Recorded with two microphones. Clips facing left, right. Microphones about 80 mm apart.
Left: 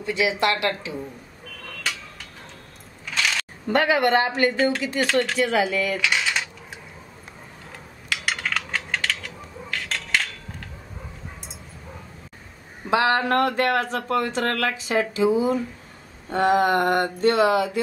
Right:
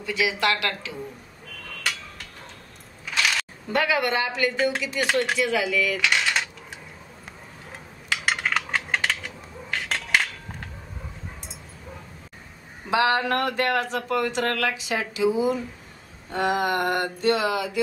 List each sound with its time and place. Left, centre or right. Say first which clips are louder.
0.0 s speech: left 2 dB; left
3.1 s camera: even; centre
3.7 s speech: left 4 dB; left
5.9 s coin: even; centre
8.1 s a sound: right 2 dB; centre
12.9 s speech: left 2 dB; left